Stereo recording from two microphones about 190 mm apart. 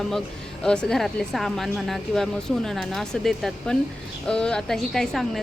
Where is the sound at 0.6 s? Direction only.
5° left (ahead or behind).